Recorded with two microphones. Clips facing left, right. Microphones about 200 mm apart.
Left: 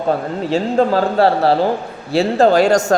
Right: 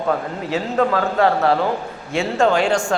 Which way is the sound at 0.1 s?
30° left (ahead or behind).